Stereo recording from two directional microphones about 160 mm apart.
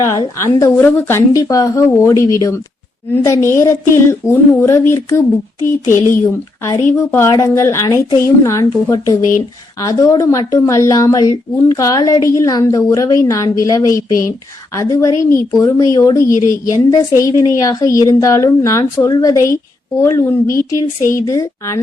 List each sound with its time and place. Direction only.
0.1 s a woman's voice: 15° left (ahead or behind)